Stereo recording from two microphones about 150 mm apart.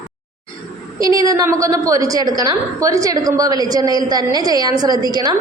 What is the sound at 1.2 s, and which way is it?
A woman's voice, 25° right (ahead or behind).